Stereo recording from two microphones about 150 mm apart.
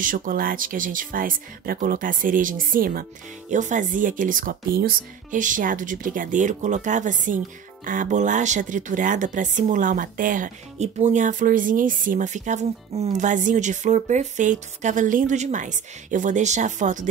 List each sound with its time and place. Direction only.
0.0 s speech: 65° right (ahead or behind)